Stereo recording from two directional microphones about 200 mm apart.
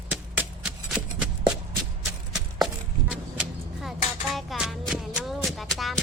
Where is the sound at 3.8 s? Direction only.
Centre (ahead or behind).